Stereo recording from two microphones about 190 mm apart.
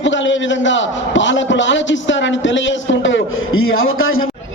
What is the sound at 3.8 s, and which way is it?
Speech, 90° left.